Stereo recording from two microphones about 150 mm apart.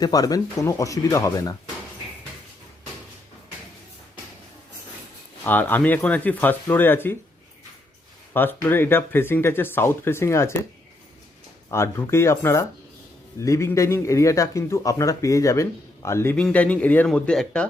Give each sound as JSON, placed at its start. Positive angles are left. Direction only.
{"t": 0.0, "sound": "speech", "side_deg": 25}
{"t": 5.4, "sound": "speech", "side_deg": 15}
{"t": 8.3, "sound": "speech", "side_deg": 15}
{"t": 11.7, "sound": "speech", "side_deg": 20}